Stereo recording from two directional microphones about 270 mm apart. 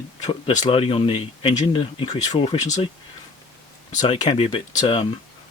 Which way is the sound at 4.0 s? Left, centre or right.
Left.